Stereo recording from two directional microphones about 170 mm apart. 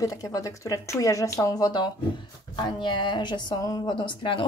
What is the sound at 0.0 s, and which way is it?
Speech, 20° left (ahead or behind).